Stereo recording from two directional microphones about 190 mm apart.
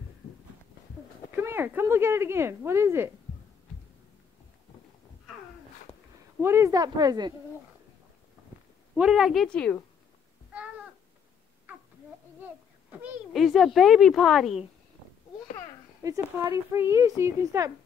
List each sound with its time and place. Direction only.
1.3 s speech: 10° right (ahead or behind)
6.4 s a woman's voice: 15° right (ahead or behind)
8.9 s speech: 5° right (ahead or behind)
13.0 s speech: centre (ahead or behind)
16.0 s speech: 15° right (ahead or behind)